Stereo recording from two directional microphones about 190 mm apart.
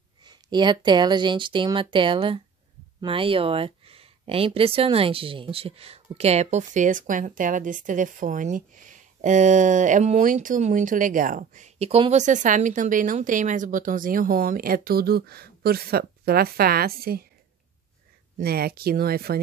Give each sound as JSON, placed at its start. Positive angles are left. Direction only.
{"t": 0.2, "sound": "speech", "side_deg": -20}
{"t": 18.4, "sound": "speech", "side_deg": -55}